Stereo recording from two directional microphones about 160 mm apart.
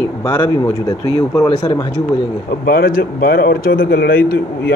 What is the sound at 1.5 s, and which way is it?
Speech, 40° left (ahead or behind).